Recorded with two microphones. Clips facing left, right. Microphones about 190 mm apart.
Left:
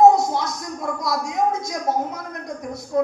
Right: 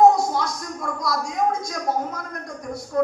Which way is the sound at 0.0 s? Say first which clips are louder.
Left 2 dB; 20° left (ahead or behind).